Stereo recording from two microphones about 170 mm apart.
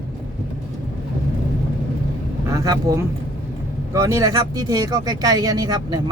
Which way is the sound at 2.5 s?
20° right (ahead or behind).